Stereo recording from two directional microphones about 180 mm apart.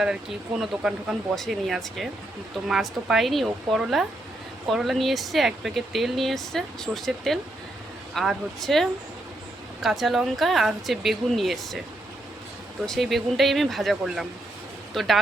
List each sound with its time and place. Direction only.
0.0 s speech: 5° right (ahead or behind)
12.8 s speech: centre (ahead or behind)